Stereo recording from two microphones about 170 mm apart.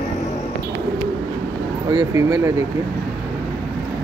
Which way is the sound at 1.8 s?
25° right (ahead or behind).